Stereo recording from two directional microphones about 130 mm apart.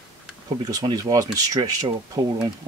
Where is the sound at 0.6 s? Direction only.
30° right (ahead or behind).